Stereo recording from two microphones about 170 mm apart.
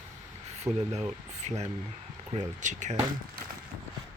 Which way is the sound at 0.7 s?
15° right (ahead or behind).